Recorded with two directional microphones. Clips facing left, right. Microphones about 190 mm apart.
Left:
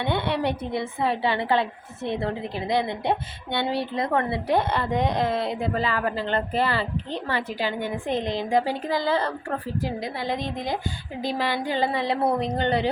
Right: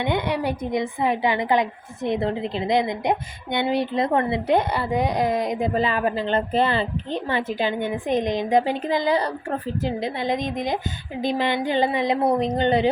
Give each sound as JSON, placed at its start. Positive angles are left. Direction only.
{"t": 0.0, "sound": "a woman's voice", "side_deg": -15}